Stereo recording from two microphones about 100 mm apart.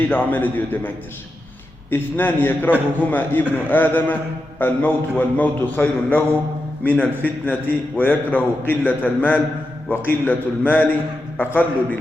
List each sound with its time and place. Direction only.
0.0 s a man's voice: 20° left (ahead or behind)
1.9 s a man's voice: 20° left (ahead or behind)